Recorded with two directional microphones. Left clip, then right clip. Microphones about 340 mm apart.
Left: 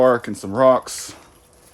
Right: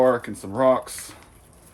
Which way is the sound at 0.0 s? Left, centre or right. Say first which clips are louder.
Left 4 dB; left.